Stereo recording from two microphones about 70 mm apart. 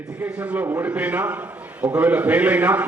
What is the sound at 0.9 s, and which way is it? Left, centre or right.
A man's voice, centre.